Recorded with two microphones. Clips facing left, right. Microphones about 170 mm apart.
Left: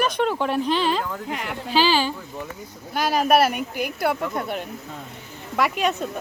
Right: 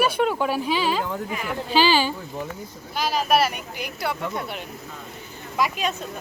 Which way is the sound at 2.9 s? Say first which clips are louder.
Left 3 dB; 55° left (ahead or behind).